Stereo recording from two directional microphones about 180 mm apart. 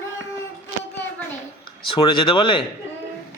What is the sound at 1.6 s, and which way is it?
Speech, 30° left (ahead or behind).